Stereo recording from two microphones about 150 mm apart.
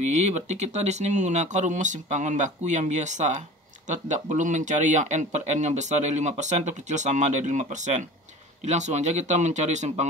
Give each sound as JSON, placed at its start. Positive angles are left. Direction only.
{"t": 0.0, "sound": "speech", "side_deg": -50}